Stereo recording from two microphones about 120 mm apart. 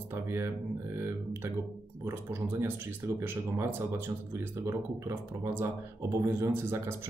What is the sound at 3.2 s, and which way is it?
Speech, 20° right (ahead or behind).